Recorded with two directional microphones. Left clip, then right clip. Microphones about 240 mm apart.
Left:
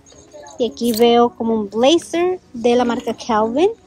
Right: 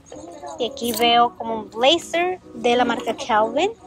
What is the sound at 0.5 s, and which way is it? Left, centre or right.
A woman's voice, centre.